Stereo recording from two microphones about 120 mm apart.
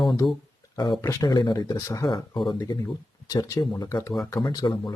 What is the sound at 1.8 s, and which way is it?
Speech, 25° left (ahead or behind).